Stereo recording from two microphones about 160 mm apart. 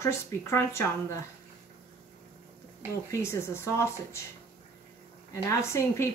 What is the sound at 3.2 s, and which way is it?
Speech, 15° left (ahead or behind).